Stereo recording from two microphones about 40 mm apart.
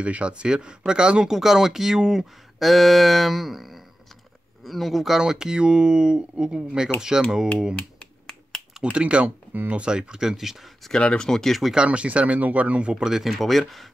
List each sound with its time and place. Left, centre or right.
0.0 s speech: right
1.3 s speech: centre
2.6 s a sound: centre
5.2 s speech: centre
8.9 s speech: right; by 10.6 s centre
11.0 s speech: left
11.2 s speech: centre
11.7 s speech: right
12.9 s a sound: centre